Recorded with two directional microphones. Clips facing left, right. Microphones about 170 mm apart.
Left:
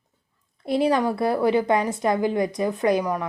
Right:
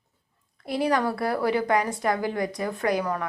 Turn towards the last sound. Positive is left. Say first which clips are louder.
# left 4 dB
turn(degrees=15)  # may be behind; listen again after turning